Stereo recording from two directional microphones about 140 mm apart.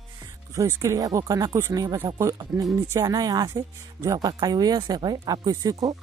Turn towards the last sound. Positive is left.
turn(degrees=-25)  # may be behind; listen again after turning